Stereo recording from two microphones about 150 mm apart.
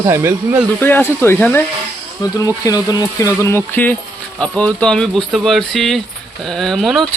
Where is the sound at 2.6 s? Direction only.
25° left (ahead or behind); by 7.0 s centre (ahead or behind).